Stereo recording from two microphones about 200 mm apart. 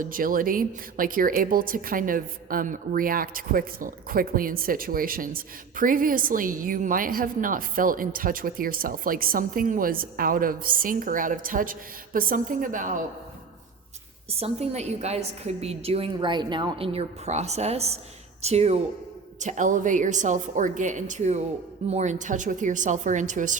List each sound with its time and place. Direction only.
0.0 s a woman's voice: 45° right (ahead or behind)
14.3 s a woman's voice: 30° right (ahead or behind)